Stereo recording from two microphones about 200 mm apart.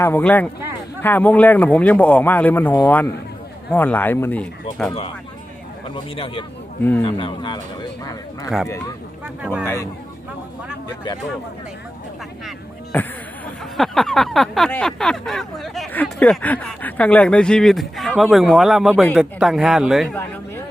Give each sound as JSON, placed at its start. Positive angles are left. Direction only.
{"t": 0.0, "sound": "speech", "side_deg": 10}
{"t": 5.9, "sound": "speech", "side_deg": 25}
{"t": 9.2, "sound": "speech", "side_deg": -5}
{"t": 12.5, "sound": "a sound", "side_deg": 5}